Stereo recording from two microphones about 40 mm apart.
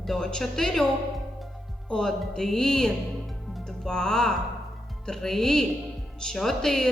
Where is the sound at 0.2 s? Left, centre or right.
Centre.